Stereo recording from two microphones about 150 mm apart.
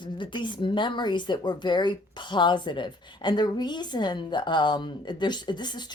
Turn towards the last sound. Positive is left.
turn(degrees=30)  # may be behind; listen again after turning